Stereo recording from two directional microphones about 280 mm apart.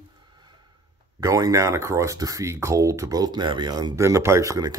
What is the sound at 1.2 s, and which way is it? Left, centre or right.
Speech, centre.